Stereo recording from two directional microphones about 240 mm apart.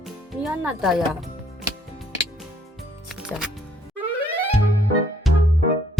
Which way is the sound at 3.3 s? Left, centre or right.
Centre.